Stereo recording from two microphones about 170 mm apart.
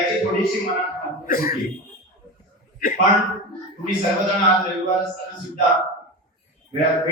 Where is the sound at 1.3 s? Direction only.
55° left (ahead or behind).